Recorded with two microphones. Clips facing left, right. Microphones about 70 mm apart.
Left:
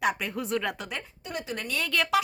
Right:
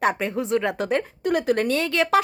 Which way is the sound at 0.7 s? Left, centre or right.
Right.